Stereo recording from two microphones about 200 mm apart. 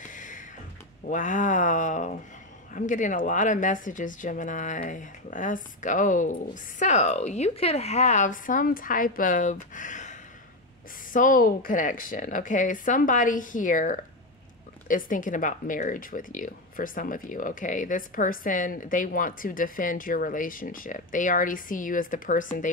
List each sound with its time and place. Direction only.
0.0 s a sound: 40° left (ahead or behind)
1.0 s speech: 40° left (ahead or behind)
11.1 s speech: 40° left (ahead or behind)